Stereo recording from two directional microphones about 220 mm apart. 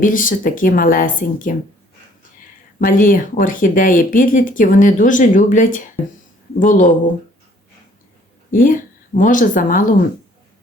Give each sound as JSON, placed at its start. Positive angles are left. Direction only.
{"t": 0.0, "sound": "speech", "side_deg": 40}
{"t": 2.7, "sound": "speech", "side_deg": 40}
{"t": 8.4, "sound": "a woman's voice", "side_deg": 35}